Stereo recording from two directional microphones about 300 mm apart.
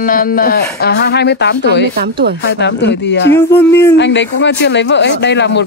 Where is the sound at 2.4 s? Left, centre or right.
Left.